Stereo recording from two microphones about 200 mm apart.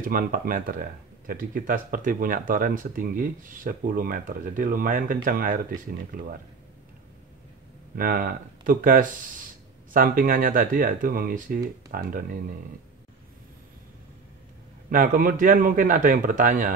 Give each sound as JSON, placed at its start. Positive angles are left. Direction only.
{"t": 0.0, "sound": "speech", "side_deg": -45}
{"t": 7.9, "sound": "speech", "side_deg": -45}
{"t": 14.9, "sound": "speech", "side_deg": -45}